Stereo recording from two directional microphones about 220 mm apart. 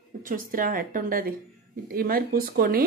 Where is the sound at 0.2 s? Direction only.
40° right (ahead or behind).